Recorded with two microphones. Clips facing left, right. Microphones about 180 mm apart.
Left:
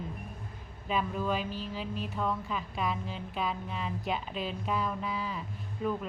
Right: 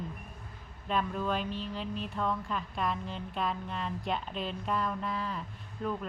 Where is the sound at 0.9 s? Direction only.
5° left (ahead or behind).